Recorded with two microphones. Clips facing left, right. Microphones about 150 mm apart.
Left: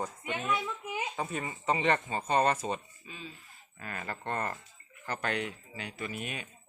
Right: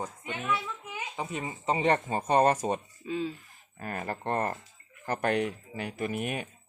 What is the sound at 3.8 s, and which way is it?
Speech, 40° right (ahead or behind).